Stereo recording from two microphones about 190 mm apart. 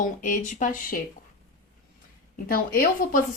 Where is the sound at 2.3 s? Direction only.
50° left (ahead or behind).